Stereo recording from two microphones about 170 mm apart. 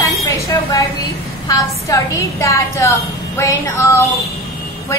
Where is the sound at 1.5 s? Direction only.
20° left (ahead or behind).